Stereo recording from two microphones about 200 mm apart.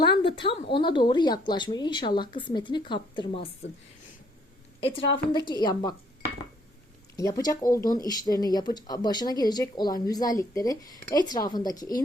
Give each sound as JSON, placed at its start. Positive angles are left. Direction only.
{"t": 0.0, "sound": "a woman's voice", "side_deg": 25}
{"t": 4.8, "sound": "a woman's voice", "side_deg": 25}
{"t": 7.2, "sound": "a woman's voice", "side_deg": 15}